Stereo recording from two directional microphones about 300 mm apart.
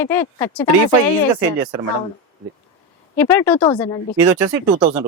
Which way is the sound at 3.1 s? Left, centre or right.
Centre.